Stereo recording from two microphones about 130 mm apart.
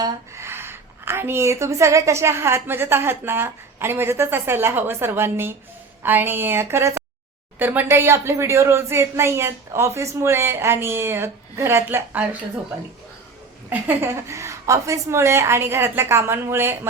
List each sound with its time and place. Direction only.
0.0 s a woman's voice: 20° right (ahead or behind)
13.7 s a woman's voice: 15° right (ahead or behind)